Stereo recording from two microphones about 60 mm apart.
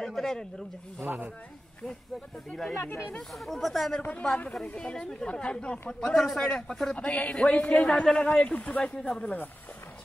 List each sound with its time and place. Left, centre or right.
0.0 s speech: centre
1.0 s speech: right
2.7 s speech: left
3.2 s speech: centre
4.0 s a woman's voice: left
8.3 s speech: left